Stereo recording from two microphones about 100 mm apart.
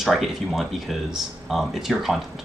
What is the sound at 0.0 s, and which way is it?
Speech, 5° right (ahead or behind).